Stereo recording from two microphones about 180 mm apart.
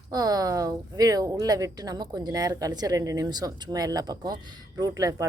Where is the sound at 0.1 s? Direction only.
20° right (ahead or behind).